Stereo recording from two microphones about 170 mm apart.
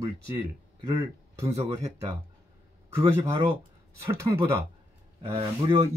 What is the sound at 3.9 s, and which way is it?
Speech, 15° right (ahead or behind).